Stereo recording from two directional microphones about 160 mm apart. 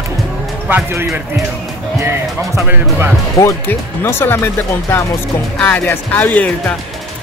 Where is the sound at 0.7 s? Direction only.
15° right (ahead or behind).